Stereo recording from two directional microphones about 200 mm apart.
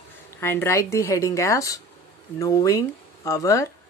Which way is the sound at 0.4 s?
10° left (ahead or behind).